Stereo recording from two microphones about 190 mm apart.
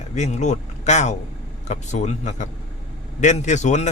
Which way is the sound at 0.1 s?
40° left (ahead or behind).